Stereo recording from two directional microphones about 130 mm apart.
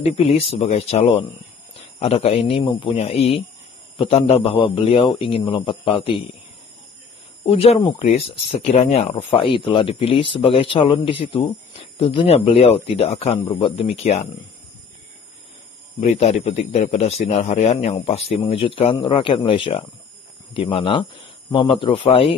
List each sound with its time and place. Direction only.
0.0 s speech: 55° left (ahead or behind)
7.4 s speech: 50° left (ahead or behind)
9.1 s speech: 40° left (ahead or behind); by 14.3 s 55° left (ahead or behind)
16.0 s a man's voice: 55° left (ahead or behind)